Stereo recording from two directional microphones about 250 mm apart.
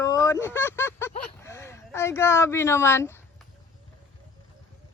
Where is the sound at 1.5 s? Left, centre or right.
Centre.